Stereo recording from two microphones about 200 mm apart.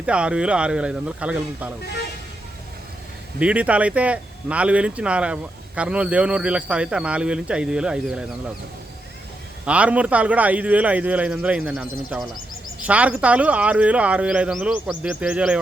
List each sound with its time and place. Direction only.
0.0 s speech: 5° right (ahead or behind)
1.8 s speech: 55° left (ahead or behind)
3.3 s speech: 5° right (ahead or behind)
9.6 s speech: 5° right (ahead or behind)